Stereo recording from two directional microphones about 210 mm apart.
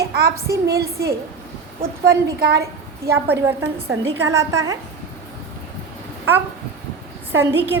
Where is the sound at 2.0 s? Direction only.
50° right (ahead or behind).